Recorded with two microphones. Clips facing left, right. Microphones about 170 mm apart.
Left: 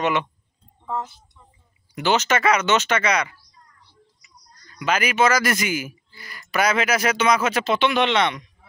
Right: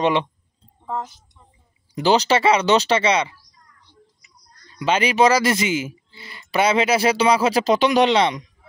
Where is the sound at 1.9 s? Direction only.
35° right (ahead or behind).